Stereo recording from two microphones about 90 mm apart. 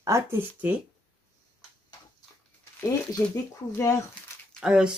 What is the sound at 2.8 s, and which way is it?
Speech, 25° left (ahead or behind).